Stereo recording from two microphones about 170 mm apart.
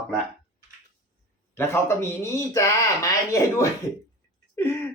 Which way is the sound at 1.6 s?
15° left (ahead or behind).